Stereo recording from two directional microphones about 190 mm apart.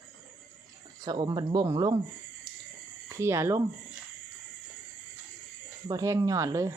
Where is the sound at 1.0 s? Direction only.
20° right (ahead or behind).